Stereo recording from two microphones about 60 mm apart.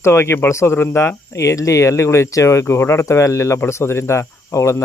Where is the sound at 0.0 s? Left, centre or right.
Left.